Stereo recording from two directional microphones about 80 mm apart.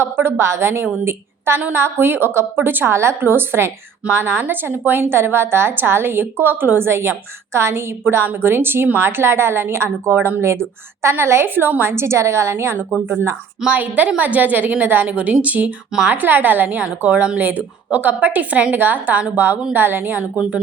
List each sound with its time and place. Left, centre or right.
0.0 s a woman's voice: right
13.6 s speech: centre